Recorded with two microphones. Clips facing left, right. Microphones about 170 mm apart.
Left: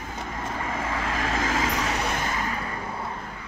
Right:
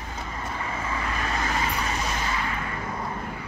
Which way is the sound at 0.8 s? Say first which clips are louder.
Left 2 dB; 90° left.